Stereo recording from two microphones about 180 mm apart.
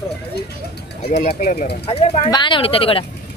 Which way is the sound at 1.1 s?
60° left (ahead or behind).